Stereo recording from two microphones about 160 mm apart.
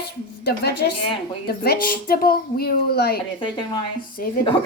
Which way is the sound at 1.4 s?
75° left (ahead or behind).